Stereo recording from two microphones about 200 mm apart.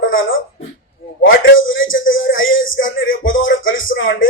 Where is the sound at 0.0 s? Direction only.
75° left (ahead or behind).